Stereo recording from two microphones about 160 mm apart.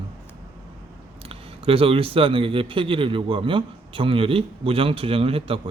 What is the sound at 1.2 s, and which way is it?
Speech, 35° right (ahead or behind).